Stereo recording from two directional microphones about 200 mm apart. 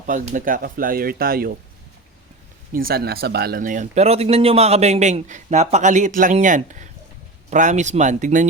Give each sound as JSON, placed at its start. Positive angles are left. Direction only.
{"t": 0.1, "sound": "speech", "side_deg": -40}
{"t": 2.7, "sound": "speech", "side_deg": -50}